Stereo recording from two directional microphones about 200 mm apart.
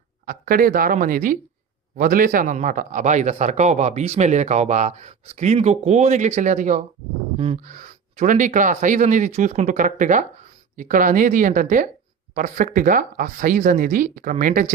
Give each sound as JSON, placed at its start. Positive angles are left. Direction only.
{"t": 0.3, "sound": "a man's voice", "side_deg": -45}